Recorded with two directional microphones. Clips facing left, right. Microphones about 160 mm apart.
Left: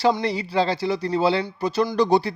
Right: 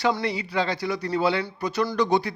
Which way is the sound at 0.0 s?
30° left (ahead or behind).